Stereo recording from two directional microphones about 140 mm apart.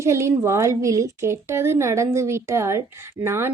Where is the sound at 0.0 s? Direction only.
20° right (ahead or behind).